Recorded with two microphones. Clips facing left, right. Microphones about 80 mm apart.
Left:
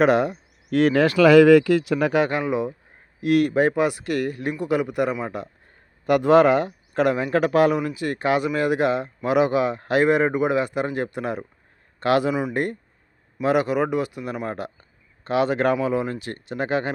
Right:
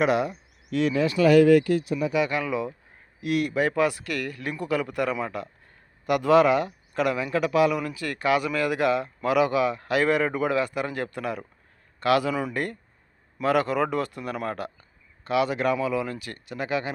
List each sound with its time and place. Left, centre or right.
0.0 s speech: left
2.3 s speech: left
3.2 s speech: left
6.1 s a man's voice: left
7.8 s a man's voice: left
12.3 s speech: centre
14.4 s speech: left